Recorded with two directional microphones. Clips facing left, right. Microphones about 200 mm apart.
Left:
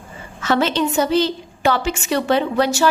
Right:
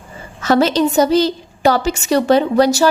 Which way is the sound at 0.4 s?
40° right (ahead or behind).